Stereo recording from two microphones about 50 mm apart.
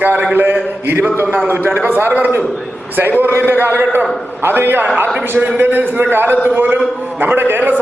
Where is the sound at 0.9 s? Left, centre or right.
Right.